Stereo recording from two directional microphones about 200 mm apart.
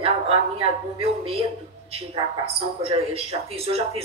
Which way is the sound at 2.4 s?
30° right (ahead or behind).